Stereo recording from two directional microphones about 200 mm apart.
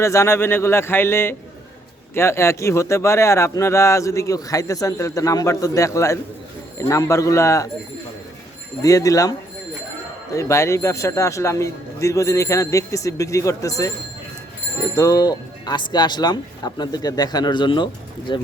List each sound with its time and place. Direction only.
0.0 s speech: 15° left (ahead or behind)
8.8 s speech: 15° left (ahead or behind)
10.3 s speech: 15° left (ahead or behind)
14.9 s speech: 15° left (ahead or behind)